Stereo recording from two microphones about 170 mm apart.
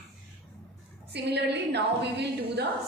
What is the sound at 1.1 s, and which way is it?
A woman's voice, 80° right.